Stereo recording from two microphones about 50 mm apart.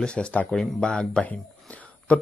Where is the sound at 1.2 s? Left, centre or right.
Left.